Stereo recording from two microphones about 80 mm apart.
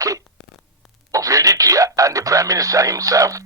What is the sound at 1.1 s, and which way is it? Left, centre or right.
Speech, right.